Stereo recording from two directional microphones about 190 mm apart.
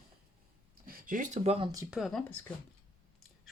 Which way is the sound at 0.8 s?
45° right (ahead or behind).